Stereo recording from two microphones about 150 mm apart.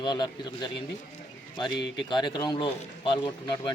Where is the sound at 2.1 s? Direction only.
30° left (ahead or behind).